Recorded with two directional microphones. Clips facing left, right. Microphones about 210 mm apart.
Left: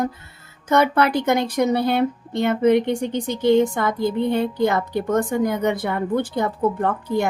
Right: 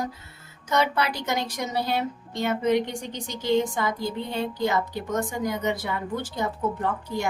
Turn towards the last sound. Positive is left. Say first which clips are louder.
# left 7 dB
turn(degrees=55)  # may be behind; listen again after turning